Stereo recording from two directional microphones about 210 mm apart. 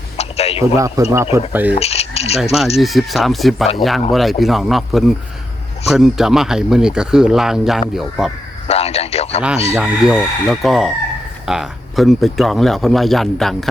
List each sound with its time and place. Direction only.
0.2 s a sound: 30° left (ahead or behind)
0.8 s a man's voice: 15° right (ahead or behind)
1.7 s a sound: 30° left (ahead or behind)
2.4 s speech: centre (ahead or behind)
8.6 s a man's voice: 30° left (ahead or behind)
9.7 s speech: 5° right (ahead or behind)